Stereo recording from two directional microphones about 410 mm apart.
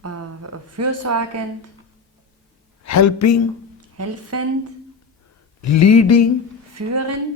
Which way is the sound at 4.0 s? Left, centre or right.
Right.